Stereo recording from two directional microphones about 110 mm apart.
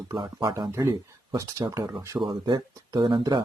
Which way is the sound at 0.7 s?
25° right (ahead or behind).